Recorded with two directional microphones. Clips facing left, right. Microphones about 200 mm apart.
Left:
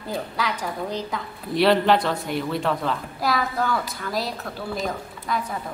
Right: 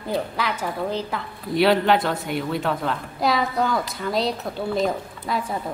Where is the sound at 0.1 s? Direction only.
10° right (ahead or behind).